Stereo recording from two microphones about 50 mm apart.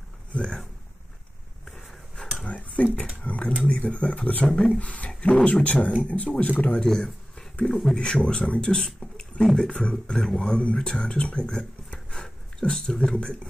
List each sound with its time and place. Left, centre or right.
0.3 s speech: centre
1.7 s a sound: centre
2.4 s a sound: left
3.6 s speech: left
4.5 s speech: centre
4.7 s speech: left
6.9 s speech: centre
9.4 s speech: centre
9.7 s speech: centre
12.1 s a sound: centre
13.1 s speech: left